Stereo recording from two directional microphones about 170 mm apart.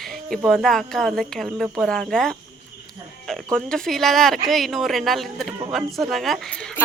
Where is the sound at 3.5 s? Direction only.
5° left (ahead or behind).